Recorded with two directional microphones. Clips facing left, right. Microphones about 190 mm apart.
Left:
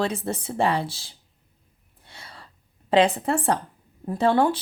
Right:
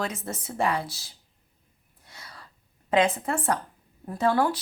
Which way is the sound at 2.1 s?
30° left (ahead or behind).